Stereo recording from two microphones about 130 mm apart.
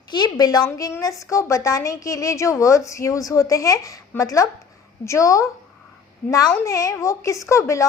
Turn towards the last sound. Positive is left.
turn(degrees=25)  # may be behind; listen again after turning